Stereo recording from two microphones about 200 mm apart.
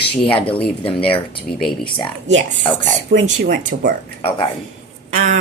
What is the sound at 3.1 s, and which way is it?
Speech, 45° right (ahead or behind).